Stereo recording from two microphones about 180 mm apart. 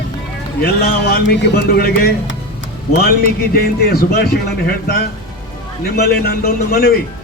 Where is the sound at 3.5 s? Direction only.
60° left (ahead or behind).